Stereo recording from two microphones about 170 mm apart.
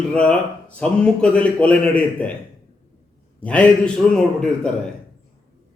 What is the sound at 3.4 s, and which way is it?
A man's voice, 10° left (ahead or behind).